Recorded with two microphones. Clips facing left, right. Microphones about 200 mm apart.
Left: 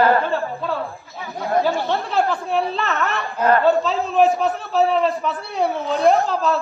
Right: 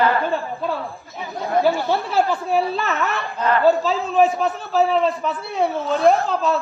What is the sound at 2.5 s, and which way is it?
A man's voice, centre (ahead or behind).